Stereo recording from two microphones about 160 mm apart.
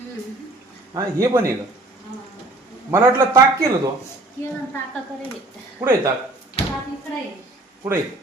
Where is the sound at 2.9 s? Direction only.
15° right (ahead or behind).